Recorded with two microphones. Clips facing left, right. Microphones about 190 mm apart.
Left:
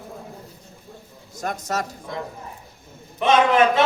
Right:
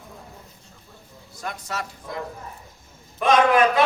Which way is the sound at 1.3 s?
45° left (ahead or behind).